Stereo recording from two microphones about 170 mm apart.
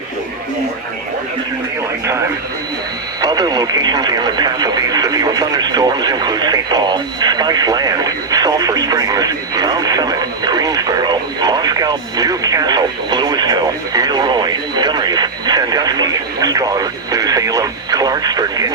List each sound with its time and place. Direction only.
3.2 s speech: 25° right (ahead or behind)